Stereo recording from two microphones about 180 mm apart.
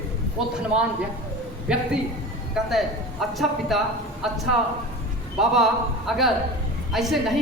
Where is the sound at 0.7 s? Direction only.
35° right (ahead or behind).